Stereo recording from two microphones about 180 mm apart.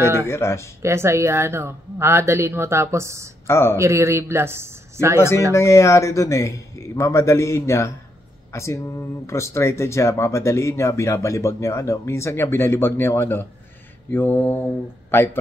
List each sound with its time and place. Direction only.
0.3 s speech: 15° left (ahead or behind)
0.8 s a woman's voice: 15° right (ahead or behind)
3.4 s speech: 15° left (ahead or behind)
3.7 s a woman's voice: 15° right (ahead or behind)
5.5 s speech: 15° left (ahead or behind)